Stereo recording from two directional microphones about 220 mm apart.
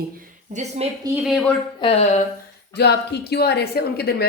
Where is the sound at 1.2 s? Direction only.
Centre (ahead or behind).